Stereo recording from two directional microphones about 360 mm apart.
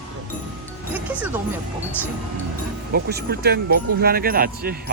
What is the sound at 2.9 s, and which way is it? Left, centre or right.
Speech, right.